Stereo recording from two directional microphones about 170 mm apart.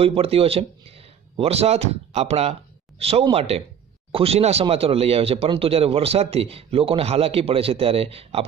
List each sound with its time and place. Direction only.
0.0 s speech: 35° right (ahead or behind)